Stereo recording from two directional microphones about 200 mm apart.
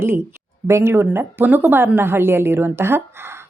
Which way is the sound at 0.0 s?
10° right (ahead or behind).